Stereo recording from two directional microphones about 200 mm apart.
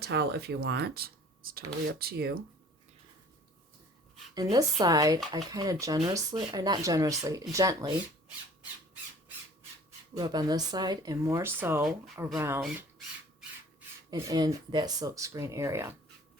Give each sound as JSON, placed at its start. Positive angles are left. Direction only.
{"t": 0.0, "sound": "speech", "side_deg": -55}
{"t": 4.5, "sound": "speech", "side_deg": -20}
{"t": 10.2, "sound": "speech", "side_deg": -20}
{"t": 11.9, "sound": "speech", "side_deg": 0}
{"t": 12.4, "sound": "speech", "side_deg": -15}
{"t": 14.1, "sound": "speech", "side_deg": -20}